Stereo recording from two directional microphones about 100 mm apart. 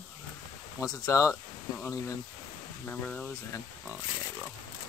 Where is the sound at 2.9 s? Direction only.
15° left (ahead or behind).